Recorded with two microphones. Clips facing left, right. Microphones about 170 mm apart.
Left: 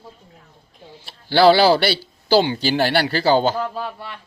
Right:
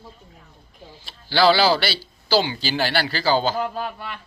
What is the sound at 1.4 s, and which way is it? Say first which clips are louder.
A man's voice: left 5 dB; 55° left (ahead or behind).